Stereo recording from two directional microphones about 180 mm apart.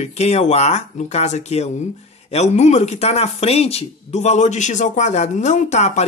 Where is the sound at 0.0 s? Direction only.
35° left (ahead or behind).